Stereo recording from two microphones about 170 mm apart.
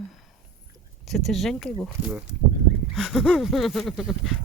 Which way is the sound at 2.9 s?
Centre (ahead or behind).